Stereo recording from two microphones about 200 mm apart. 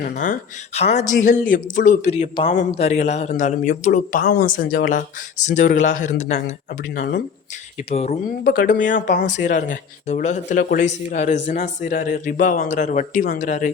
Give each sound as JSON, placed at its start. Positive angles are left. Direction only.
{"t": 0.0, "sound": "a man's voice", "side_deg": 40}
{"t": 7.9, "sound": "a man's voice", "side_deg": 30}